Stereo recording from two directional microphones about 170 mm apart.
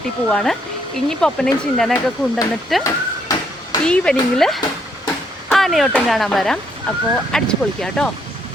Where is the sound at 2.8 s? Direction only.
20° left (ahead or behind).